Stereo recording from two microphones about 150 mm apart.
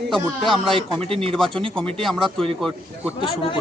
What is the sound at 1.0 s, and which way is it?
Speech, 40° right (ahead or behind).